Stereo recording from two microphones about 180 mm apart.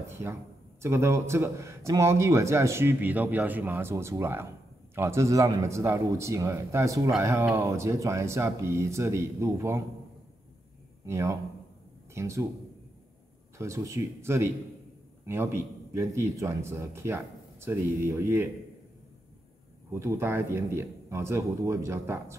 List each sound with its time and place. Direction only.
0.0 s speech: 15° right (ahead or behind)
11.1 s speech: 15° right (ahead or behind)
13.6 s speech: 15° right (ahead or behind)
19.9 s speech: 15° right (ahead or behind)